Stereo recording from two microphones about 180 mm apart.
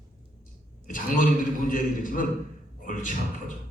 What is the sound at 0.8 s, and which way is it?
A man's voice, 50° left (ahead or behind).